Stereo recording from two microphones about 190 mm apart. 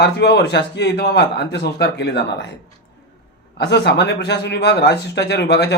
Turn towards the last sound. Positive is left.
turn(degrees=60)  # may be behind; listen again after turning